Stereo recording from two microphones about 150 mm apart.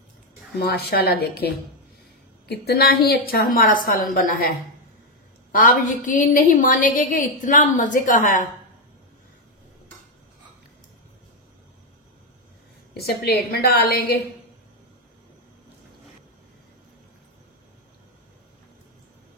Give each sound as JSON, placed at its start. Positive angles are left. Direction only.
{"t": 0.6, "sound": "a woman's voice", "side_deg": 90}
{"t": 5.5, "sound": "a woman's voice", "side_deg": 65}
{"t": 13.0, "sound": "a woman's voice", "side_deg": 90}